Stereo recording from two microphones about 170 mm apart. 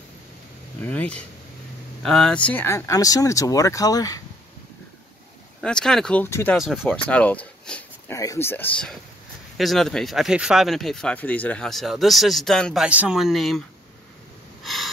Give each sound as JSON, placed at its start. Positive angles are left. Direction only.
{"t": 0.8, "sound": "speech", "side_deg": 10}
{"t": 5.6, "sound": "speech", "side_deg": 5}
{"t": 7.0, "sound": "speech", "side_deg": 10}
{"t": 14.6, "sound": "a sound", "side_deg": 0}